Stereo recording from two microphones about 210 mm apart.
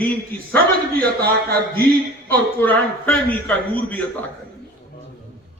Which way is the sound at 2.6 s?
10° left (ahead or behind).